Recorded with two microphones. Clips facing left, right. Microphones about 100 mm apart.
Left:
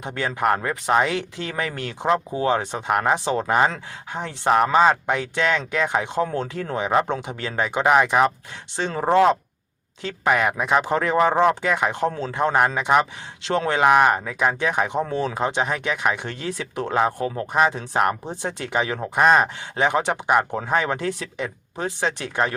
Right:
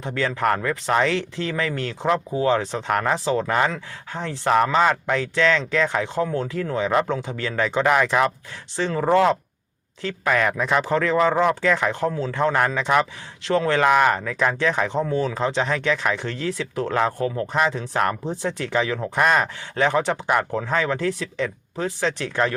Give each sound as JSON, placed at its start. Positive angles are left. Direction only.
{"t": 0.0, "sound": "a man's voice", "side_deg": 20}
{"t": 2.6, "sound": "speech", "side_deg": 15}
{"t": 6.2, "sound": "a man's voice", "side_deg": 30}